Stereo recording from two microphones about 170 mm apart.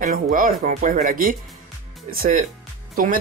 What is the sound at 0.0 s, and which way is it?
Speech, 55° right (ahead or behind).